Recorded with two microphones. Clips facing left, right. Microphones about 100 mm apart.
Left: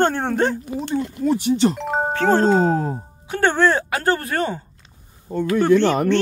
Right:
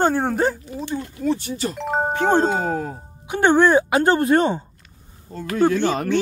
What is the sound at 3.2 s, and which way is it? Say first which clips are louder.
Speech: right 2 dB; 15° right (ahead or behind).